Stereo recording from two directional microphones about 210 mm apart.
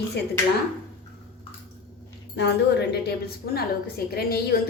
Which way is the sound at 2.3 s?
55° left (ahead or behind).